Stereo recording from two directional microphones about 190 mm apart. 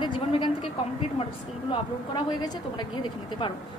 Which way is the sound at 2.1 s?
25° left (ahead or behind).